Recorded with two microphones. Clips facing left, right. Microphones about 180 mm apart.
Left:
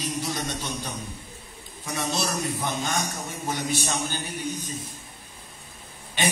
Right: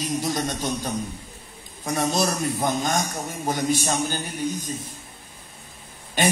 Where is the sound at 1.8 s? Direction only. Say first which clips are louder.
Right 6 dB; 45° right (ahead or behind).